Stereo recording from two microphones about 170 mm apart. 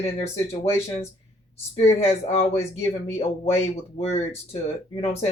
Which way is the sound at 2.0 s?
35° left (ahead or behind).